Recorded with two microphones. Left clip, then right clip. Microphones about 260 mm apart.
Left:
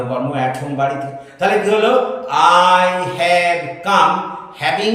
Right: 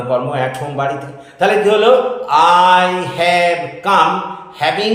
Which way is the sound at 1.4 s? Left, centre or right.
Centre.